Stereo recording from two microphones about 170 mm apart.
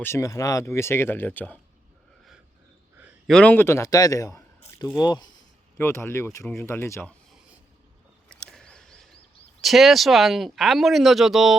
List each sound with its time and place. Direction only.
0.0 s speech: 15° left (ahead or behind)
3.2 s speech: 5° left (ahead or behind); by 5.3 s 25° left (ahead or behind)
5.7 s speech: 15° left (ahead or behind)
8.3 s a sound: 5° left (ahead or behind)
9.6 s speech: centre (ahead or behind)